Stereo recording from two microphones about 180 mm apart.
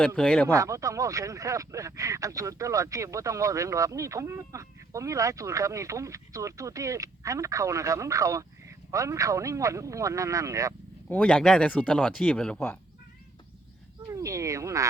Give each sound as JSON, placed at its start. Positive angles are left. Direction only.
{"t": 0.2, "sound": "speech", "side_deg": 5}
{"t": 0.4, "sound": "speech", "side_deg": -15}
{"t": 11.1, "sound": "speech", "side_deg": 5}
{"t": 14.1, "sound": "speech", "side_deg": -15}